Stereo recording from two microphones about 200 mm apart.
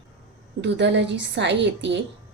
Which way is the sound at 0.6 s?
60° right (ahead or behind).